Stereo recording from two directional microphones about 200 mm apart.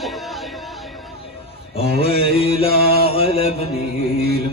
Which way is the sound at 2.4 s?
30° left (ahead or behind).